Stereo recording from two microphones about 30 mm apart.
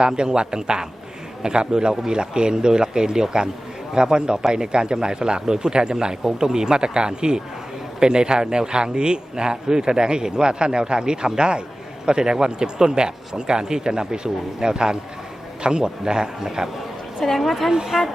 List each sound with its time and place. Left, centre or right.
0.0 s a man's voice: right
17.2 s a woman's voice: centre